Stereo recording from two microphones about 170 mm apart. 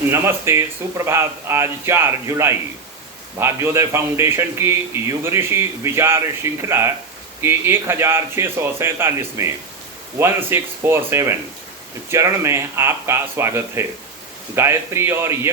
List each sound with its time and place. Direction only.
0.1 s a man's voice: 15° right (ahead or behind)